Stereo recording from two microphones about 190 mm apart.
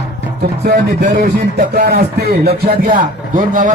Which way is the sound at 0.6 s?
60° right (ahead or behind).